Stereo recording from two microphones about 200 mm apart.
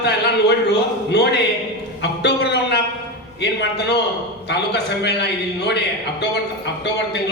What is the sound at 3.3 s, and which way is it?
A man's voice, 55° left (ahead or behind).